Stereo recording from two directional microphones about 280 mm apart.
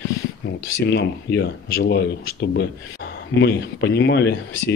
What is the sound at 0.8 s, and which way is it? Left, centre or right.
Speech, left.